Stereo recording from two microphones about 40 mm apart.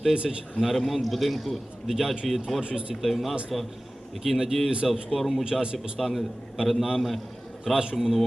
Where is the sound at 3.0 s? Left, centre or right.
Centre.